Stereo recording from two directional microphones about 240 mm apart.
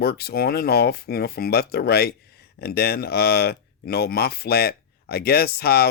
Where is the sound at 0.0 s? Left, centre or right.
Left.